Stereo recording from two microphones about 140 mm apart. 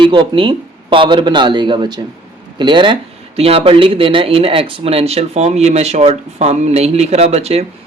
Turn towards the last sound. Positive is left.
turn(degrees=-50)  # may be behind; listen again after turning